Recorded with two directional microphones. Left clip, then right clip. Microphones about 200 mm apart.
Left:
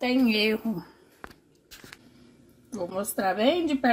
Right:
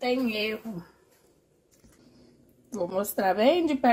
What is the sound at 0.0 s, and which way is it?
Speech, 55° left (ahead or behind).